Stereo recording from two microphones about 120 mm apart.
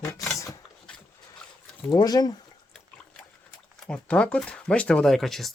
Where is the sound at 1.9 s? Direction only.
35° left (ahead or behind).